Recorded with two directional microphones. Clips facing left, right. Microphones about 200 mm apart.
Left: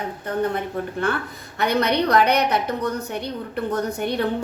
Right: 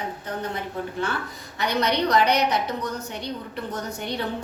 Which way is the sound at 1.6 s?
55° left (ahead or behind).